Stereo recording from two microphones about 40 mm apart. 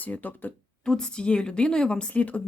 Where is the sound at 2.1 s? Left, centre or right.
Left.